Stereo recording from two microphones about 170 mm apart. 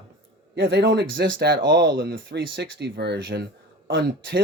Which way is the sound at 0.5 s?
75° right (ahead or behind).